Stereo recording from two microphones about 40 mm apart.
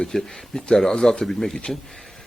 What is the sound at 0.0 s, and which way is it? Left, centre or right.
Speech, centre.